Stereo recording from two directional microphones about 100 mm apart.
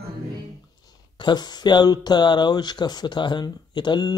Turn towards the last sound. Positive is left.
turn(degrees=45)  # may be behind; listen again after turning